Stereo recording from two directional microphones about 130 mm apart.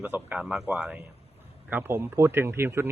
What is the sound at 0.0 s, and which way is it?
Speech, 15° right (ahead or behind).